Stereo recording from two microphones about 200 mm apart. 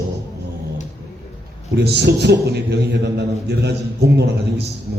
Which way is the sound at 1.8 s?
55° right (ahead or behind).